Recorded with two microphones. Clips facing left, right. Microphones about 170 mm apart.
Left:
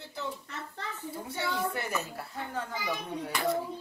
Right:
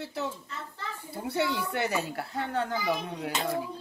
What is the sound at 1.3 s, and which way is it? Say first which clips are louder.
Speech: right 4 dB; 70° right (ahead or behind).